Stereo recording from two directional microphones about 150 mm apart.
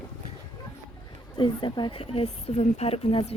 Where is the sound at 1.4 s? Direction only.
30° left (ahead or behind).